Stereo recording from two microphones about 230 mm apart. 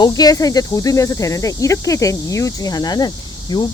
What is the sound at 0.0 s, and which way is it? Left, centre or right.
Speech, centre.